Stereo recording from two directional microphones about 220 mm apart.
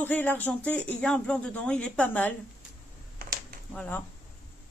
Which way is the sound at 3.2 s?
40° right (ahead or behind).